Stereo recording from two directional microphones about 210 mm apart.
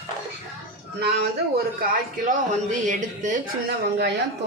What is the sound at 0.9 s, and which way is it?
A man's voice, 50° right (ahead or behind).